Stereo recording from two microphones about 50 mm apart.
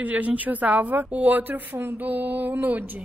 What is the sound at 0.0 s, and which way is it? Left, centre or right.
A woman's voice, right.